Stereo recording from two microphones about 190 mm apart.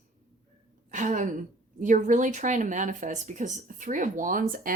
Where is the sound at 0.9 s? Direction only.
40° right (ahead or behind).